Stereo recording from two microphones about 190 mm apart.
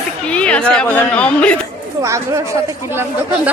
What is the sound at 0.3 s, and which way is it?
A woman's voice, 5° left (ahead or behind).